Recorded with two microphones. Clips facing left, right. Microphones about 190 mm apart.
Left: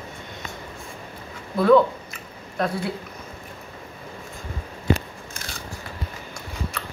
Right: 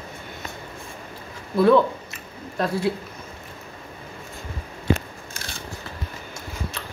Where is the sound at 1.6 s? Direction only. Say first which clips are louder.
Left 2 dB; 25° right (ahead or behind).